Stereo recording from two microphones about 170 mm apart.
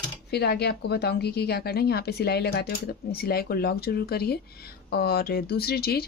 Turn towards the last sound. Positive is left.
turn(degrees=65)  # may be behind; listen again after turning